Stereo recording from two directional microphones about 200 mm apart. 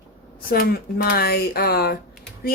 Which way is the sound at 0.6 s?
50° left (ahead or behind).